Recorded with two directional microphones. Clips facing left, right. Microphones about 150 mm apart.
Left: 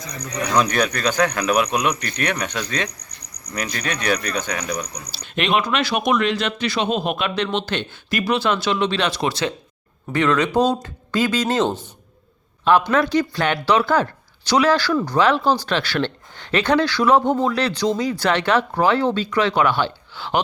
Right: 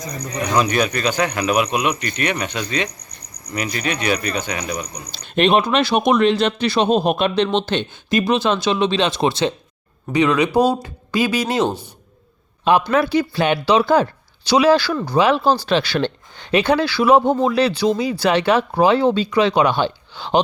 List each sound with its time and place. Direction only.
0.1 s speech: 30° right (ahead or behind)
0.3 s speech: 5° right (ahead or behind)
5.2 s speech: 35° right (ahead or behind)
10.1 s speech: 15° right (ahead or behind)